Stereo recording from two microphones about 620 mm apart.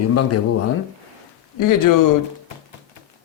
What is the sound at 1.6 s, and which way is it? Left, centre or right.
Speech, left.